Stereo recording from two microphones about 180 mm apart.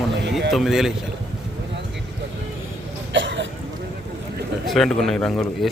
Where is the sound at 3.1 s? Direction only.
90° right.